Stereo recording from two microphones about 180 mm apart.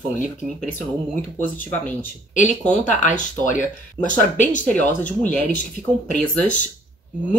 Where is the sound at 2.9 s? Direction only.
45° left (ahead or behind).